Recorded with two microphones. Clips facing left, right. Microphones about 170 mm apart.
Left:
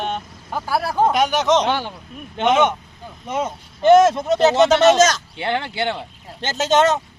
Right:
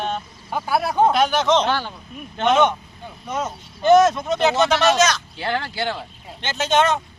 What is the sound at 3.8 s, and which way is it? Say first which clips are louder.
Speech: left 2 dB; 25° left (ahead or behind).